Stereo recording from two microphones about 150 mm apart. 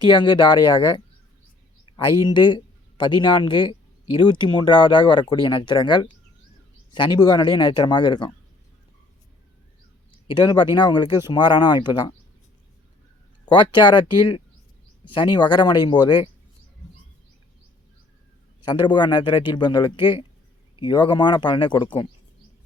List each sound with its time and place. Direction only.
0.0 s speech: 30° left (ahead or behind)
2.2 s speech: 30° left (ahead or behind)
10.2 s speech: 30° left (ahead or behind)
13.4 s speech: 30° left (ahead or behind)
18.6 s speech: 30° left (ahead or behind)